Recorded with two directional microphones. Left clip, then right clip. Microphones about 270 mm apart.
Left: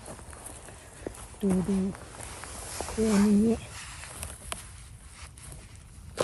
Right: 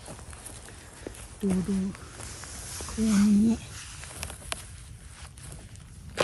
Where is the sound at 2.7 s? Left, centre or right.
Left.